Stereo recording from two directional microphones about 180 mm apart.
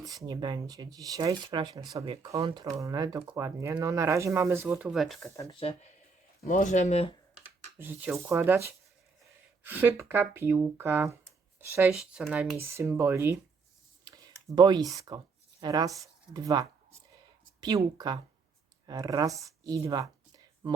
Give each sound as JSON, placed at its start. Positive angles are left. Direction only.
{"t": 0.0, "sound": "speech", "side_deg": -20}
{"t": 4.9, "sound": "speech", "side_deg": 0}
{"t": 5.4, "sound": "speech", "side_deg": 30}
{"t": 6.5, "sound": "speech", "side_deg": 45}
{"t": 7.8, "sound": "speech", "side_deg": -10}
{"t": 12.5, "sound": "speech", "side_deg": -15}
{"t": 14.0, "sound": "clicking", "side_deg": -25}
{"t": 15.6, "sound": "speech", "side_deg": -20}